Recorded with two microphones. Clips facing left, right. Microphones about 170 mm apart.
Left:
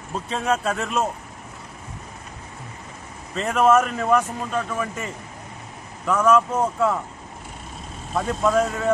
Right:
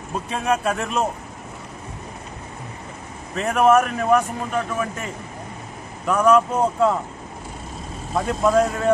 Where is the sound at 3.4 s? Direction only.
15° right (ahead or behind).